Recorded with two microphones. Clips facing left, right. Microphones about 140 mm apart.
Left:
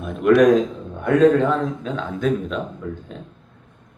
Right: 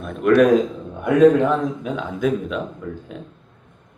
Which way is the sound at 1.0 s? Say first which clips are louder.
Right 1 dB; 10° right (ahead or behind).